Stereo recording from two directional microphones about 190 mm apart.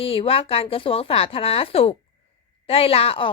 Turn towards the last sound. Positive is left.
turn(degrees=30)  # may be behind; listen again after turning